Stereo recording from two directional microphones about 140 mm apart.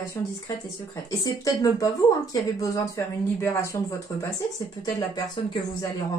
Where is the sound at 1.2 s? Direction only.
25° left (ahead or behind).